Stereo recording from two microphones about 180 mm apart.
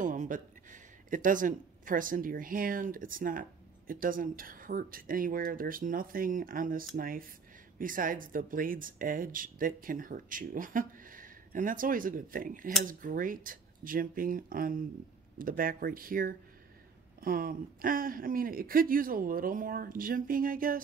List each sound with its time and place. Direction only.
0.0 s speech: 45° right (ahead or behind)